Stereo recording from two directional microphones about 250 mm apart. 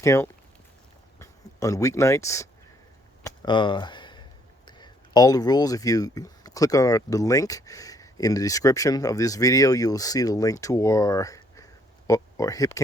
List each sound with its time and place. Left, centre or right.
0.0 s speech: centre
3.2 s a sound: centre
4.6 s speech: centre